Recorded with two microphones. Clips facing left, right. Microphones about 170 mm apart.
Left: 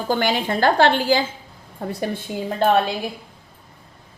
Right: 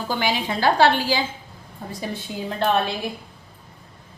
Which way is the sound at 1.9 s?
65° left (ahead or behind).